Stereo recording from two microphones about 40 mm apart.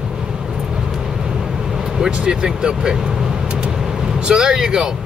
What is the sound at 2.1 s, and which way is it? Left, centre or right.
Speech, right.